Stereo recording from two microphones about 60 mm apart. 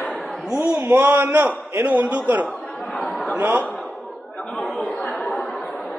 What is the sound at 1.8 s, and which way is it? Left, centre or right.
Speech, right.